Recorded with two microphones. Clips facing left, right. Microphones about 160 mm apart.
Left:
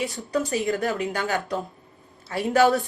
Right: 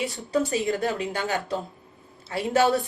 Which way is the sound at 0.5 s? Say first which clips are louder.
Left 1 dB; 25° right (ahead or behind).